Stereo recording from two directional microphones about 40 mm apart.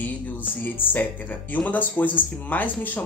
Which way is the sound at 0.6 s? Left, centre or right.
Left.